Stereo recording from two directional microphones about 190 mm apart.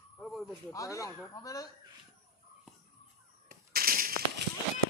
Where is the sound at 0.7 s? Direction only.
15° left (ahead or behind).